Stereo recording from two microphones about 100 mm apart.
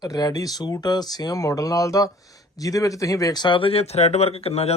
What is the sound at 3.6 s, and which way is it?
Speech, 75° left (ahead or behind).